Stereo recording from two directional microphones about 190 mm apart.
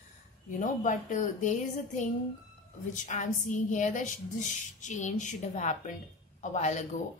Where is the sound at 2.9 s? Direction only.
40° left (ahead or behind).